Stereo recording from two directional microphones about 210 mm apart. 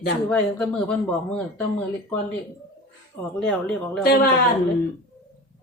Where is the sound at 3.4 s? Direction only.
5° left (ahead or behind).